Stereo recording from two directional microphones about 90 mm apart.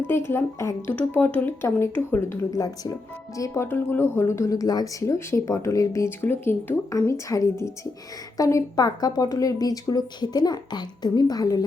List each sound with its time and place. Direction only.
0.1 s speech: 25° left (ahead or behind)
2.5 s speech: 45° left (ahead or behind)
6.2 s speech: 25° left (ahead or behind)
7.1 s speech: 35° left (ahead or behind)